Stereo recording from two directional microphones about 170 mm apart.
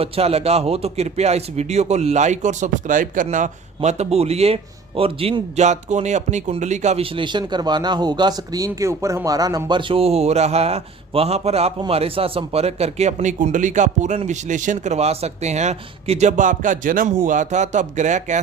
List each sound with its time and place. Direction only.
0.0 s a man's voice: 35° right (ahead or behind)